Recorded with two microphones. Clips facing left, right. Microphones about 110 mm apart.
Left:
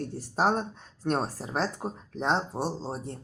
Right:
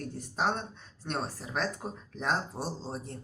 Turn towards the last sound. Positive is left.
turn(degrees=30)  # may be behind; listen again after turning